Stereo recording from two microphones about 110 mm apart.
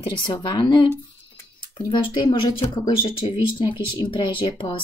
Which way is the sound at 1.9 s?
45° left (ahead or behind).